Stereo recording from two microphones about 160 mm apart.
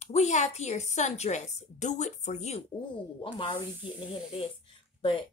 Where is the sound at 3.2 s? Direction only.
30° left (ahead or behind).